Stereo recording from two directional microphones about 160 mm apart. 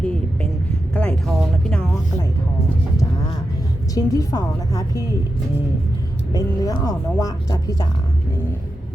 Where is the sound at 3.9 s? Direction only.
20° left (ahead or behind).